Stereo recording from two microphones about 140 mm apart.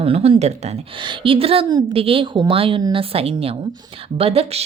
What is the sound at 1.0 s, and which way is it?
A woman's voice, 40° right (ahead or behind).